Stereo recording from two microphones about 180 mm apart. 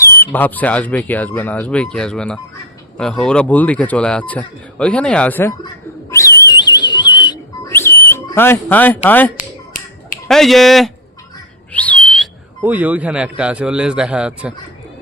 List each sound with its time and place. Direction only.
0.0 s a sound: 15° left (ahead or behind)
0.3 s a man's voice: 10° left (ahead or behind)
5.6 s a sound: 15° left (ahead or behind)
7.7 s whistle: 10° left (ahead or behind)
9.0 s a man's voice: 10° left (ahead or behind)
11.7 s whistling: 10° left (ahead or behind)
12.6 s a man's voice: 10° right (ahead or behind)